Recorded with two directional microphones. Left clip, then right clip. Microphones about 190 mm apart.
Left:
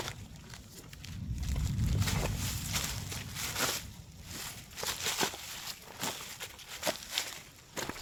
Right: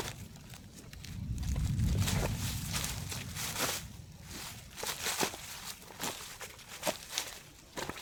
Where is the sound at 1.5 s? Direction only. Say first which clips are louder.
Even; 15° left (ahead or behind).